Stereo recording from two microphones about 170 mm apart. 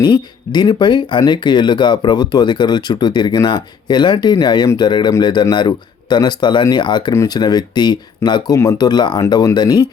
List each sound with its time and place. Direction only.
0.0 s speech: 25° left (ahead or behind)